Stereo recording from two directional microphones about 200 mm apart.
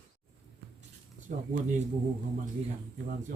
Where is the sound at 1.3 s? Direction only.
40° right (ahead or behind).